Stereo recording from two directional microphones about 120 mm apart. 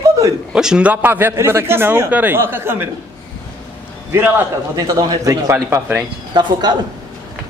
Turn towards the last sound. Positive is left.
turn(degrees=-40)  # may be behind; listen again after turning